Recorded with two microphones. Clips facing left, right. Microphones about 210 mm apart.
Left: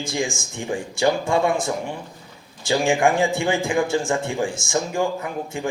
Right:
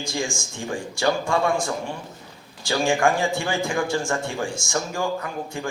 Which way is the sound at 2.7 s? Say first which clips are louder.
Left 2 dB; 20° left (ahead or behind).